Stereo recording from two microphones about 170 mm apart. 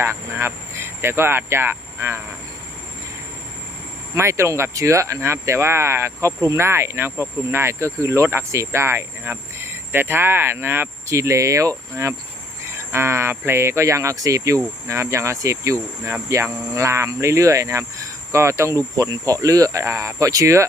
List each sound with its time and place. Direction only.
0.0 s speech: 15° right (ahead or behind)
4.1 s speech: 15° right (ahead or behind)